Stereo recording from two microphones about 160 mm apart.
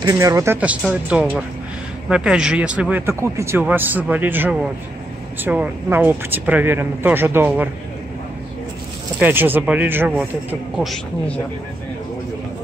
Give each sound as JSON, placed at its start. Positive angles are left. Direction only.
{"t": 0.0, "sound": "speech", "side_deg": -20}
{"t": 0.6, "sound": "speech", "side_deg": -10}
{"t": 9.2, "sound": "speech", "side_deg": -10}